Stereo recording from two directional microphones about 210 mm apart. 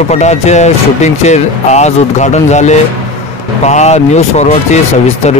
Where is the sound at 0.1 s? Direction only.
30° left (ahead or behind).